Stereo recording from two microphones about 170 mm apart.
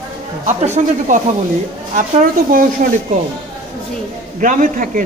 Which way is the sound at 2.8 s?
45° right (ahead or behind).